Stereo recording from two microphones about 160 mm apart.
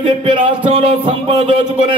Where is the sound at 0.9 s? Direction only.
35° right (ahead or behind).